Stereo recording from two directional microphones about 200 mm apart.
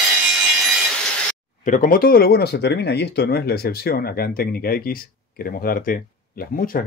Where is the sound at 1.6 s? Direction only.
45° left (ahead or behind).